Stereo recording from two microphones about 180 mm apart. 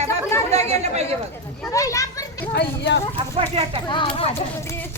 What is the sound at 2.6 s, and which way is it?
Speech, 75° left (ahead or behind).